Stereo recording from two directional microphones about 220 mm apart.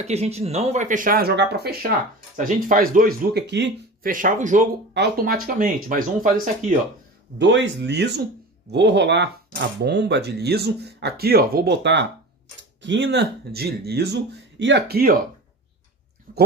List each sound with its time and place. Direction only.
0.0 s speech: 30° right (ahead or behind)
4.9 s speech: 45° right (ahead or behind)
7.3 s speech: 55° right (ahead or behind)
16.3 s speech: 40° right (ahead or behind)